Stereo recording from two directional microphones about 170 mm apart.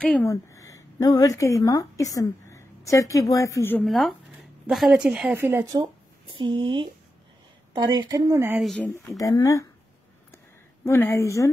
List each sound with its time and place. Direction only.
0.2 s a woman's voice: 15° left (ahead or behind)
3.8 s speech: centre (ahead or behind); by 8.5 s 15° right (ahead or behind)
8.5 s speech: centre (ahead or behind)
9.1 s speech: 20° left (ahead or behind)
10.9 s a woman's voice: 15° left (ahead or behind)